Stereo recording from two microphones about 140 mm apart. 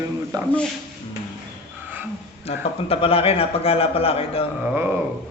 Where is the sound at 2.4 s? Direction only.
45° left (ahead or behind).